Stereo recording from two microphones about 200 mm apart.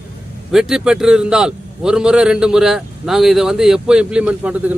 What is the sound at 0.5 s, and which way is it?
A man's voice, centre (ahead or behind).